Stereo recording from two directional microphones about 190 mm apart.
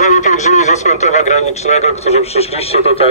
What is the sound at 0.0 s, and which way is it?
A man's voice, 40° left (ahead or behind).